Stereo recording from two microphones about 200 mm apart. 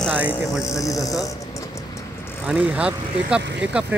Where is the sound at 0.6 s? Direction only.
15° left (ahead or behind).